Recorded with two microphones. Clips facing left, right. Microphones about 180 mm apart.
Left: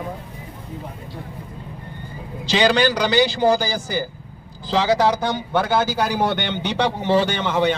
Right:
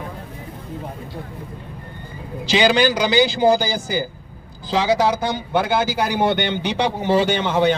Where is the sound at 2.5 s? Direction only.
5° right (ahead or behind).